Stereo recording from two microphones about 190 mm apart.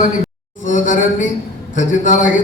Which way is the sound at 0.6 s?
40° left (ahead or behind).